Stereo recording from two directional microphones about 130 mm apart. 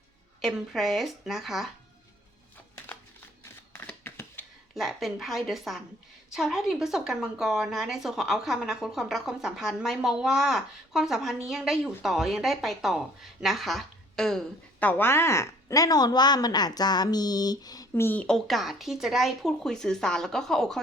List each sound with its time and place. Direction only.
0.4 s speech: centre (ahead or behind)
2.9 s a sound: 10° left (ahead or behind)
4.7 s a woman's voice: centre (ahead or behind); by 18.0 s 30° left (ahead or behind)
18.0 s speech: 10° left (ahead or behind)